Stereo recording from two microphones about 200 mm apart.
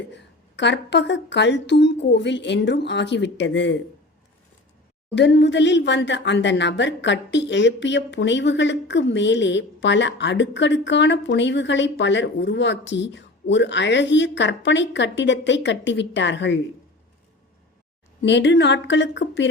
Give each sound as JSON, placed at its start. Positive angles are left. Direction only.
{"t": 0.1, "sound": "speech", "side_deg": 60}
{"t": 5.1, "sound": "speech", "side_deg": 60}
{"t": 18.2, "sound": "speech", "side_deg": 65}